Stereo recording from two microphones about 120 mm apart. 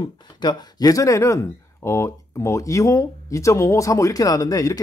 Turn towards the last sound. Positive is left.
turn(degrees=30)  # may be behind; listen again after turning